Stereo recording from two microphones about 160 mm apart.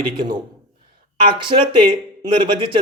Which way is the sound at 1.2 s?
30° right (ahead or behind).